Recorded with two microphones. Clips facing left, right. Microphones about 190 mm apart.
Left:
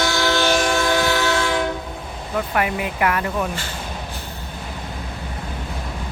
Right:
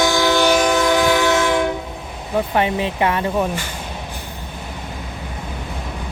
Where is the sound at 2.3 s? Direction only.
25° right (ahead or behind).